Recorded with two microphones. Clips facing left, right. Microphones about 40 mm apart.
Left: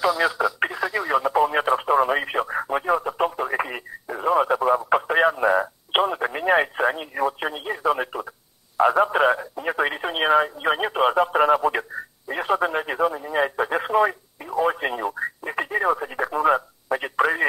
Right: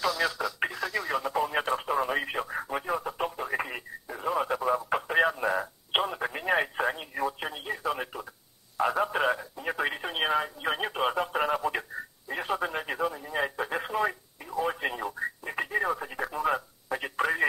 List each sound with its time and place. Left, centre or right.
0.0 s radio: centre
8.7 s telephone: left
14.6 s radio: left